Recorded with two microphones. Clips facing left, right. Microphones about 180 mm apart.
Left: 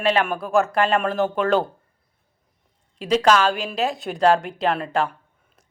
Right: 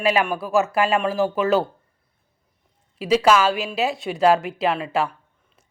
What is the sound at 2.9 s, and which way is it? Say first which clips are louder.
A woman's voice: right 1 dB; 5° right (ahead or behind).